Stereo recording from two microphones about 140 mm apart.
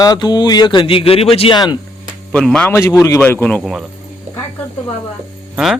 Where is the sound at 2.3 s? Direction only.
5° left (ahead or behind).